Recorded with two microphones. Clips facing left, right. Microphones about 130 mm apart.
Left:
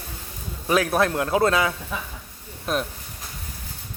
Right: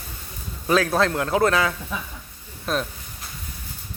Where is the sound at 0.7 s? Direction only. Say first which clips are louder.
Right 1 dB; 15° left (ahead or behind).